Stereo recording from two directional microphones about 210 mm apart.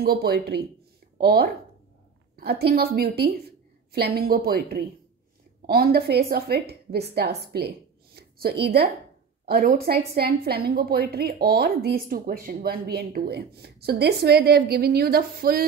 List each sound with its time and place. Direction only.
0.0 s a woman's voice: 50° right (ahead or behind)